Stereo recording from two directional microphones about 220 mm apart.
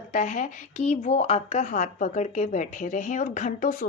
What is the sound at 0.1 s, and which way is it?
A woman's voice, 35° left (ahead or behind).